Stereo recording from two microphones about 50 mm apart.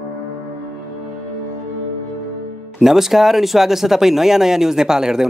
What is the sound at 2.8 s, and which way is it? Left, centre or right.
Speech, centre.